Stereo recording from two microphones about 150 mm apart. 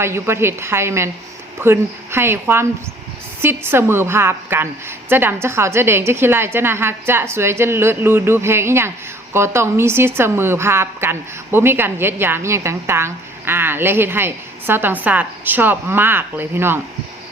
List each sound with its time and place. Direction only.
0.0 s a woman's voice: 15° right (ahead or behind)